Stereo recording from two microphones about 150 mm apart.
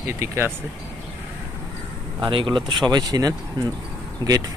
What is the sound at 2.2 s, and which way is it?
Speech, 30° right (ahead or behind).